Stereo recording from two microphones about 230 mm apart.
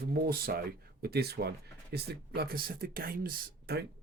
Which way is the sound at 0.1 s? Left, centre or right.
Right.